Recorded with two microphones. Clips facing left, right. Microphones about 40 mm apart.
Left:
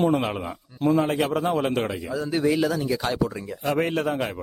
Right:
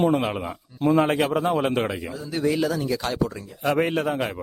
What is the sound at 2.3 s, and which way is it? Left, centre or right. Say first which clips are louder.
Speech: even; centre.